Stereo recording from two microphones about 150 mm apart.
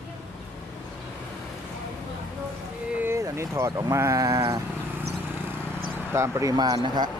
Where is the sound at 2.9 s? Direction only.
15° right (ahead or behind).